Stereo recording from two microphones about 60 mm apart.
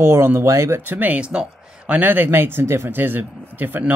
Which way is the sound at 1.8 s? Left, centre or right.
Right.